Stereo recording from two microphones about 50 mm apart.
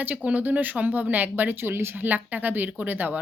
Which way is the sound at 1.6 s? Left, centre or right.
Right.